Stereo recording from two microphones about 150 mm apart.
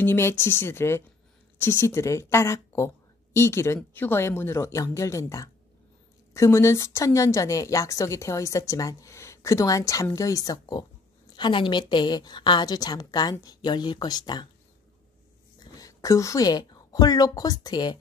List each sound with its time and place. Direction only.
0.0 s a woman's voice: 15° left (ahead or behind)
15.8 s a woman's voice: 20° left (ahead or behind)